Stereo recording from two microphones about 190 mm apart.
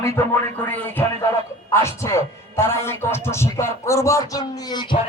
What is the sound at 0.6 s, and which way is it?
A man's voice, 10° left (ahead or behind).